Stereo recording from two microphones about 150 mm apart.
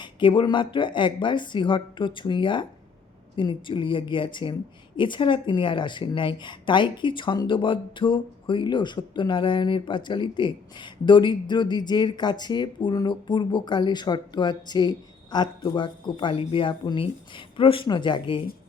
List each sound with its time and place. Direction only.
0.0 s speech: 35° left (ahead or behind)